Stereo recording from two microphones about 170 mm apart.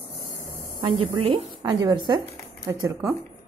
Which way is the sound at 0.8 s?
35° right (ahead or behind).